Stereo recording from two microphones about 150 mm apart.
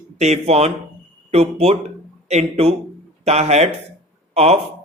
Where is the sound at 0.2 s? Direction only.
45° right (ahead or behind).